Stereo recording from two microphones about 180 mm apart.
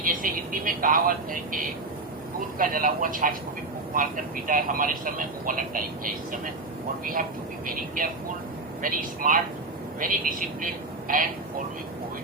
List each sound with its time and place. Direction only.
0.0 s speech: 50° right (ahead or behind)
2.6 s speech: 50° right (ahead or behind)
7.0 s speech: 50° right (ahead or behind)
8.8 s speech: 50° right (ahead or behind)